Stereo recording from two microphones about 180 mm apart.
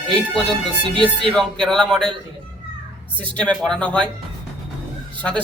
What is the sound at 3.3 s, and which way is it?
Speech, 5° left (ahead or behind).